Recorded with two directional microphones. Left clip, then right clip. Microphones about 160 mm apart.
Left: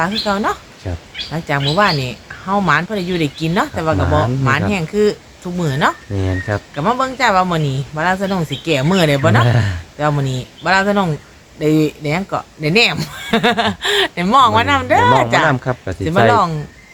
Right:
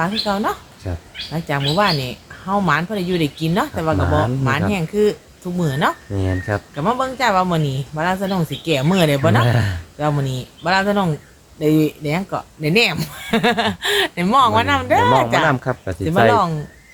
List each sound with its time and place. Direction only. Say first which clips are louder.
0.3 s speech: left 3 dB; 10° left (ahead or behind)
6.1 s speech: left 2 dB; centre (ahead or behind)
6.7 s speech: left 4 dB; 15° left (ahead or behind)
9.4 s speech: left 2 dB; centre (ahead or behind)
10.0 s speech: left 3 dB; 10° left (ahead or behind)
15.4 s speech: left 2 dB; centre (ahead or behind)